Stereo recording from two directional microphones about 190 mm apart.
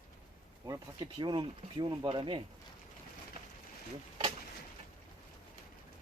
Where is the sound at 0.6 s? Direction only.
20° right (ahead or behind).